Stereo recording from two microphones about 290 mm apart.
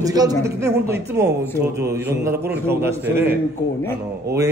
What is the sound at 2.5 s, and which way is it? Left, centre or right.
A man's voice, centre.